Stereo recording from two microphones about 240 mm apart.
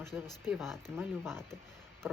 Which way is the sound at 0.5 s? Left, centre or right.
Centre.